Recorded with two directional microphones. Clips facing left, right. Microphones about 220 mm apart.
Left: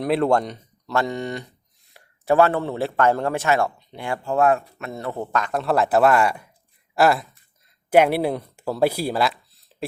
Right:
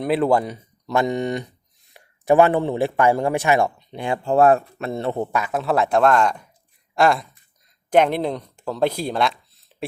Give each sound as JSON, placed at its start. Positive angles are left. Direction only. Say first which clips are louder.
{"t": 0.0, "sound": "a man's voice", "louder": "right 1 dB", "side_deg": 0}
{"t": 4.4, "sound": "speech", "louder": "right 4 dB", "side_deg": -35}
{"t": 5.3, "sound": "speech", "louder": "even", "side_deg": -5}